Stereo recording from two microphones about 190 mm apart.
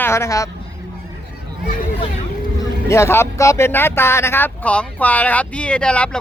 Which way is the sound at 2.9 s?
15° left (ahead or behind).